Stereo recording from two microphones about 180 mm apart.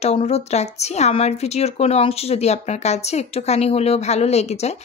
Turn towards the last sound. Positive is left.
turn(degrees=35)  # may be behind; listen again after turning